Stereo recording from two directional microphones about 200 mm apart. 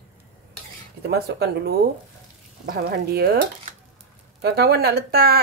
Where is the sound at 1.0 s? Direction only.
55° right (ahead or behind).